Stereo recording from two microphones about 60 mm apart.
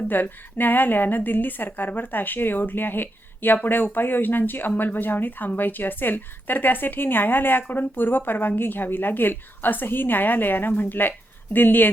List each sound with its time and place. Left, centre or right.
0.1 s a woman's voice: left